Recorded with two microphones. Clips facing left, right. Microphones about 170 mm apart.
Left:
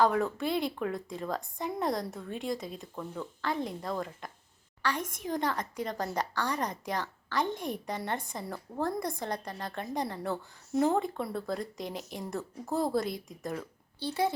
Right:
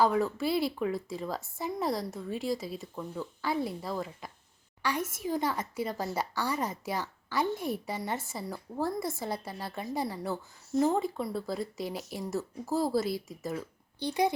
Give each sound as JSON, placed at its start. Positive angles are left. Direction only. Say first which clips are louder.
{"t": 0.0, "sound": "a woman's voice", "louder": "even", "side_deg": 0}
{"t": 14.0, "sound": "speech", "louder": "right 2 dB", "side_deg": -15}